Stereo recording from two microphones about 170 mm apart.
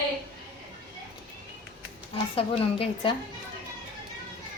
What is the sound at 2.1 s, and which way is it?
Speech, 30° left (ahead or behind).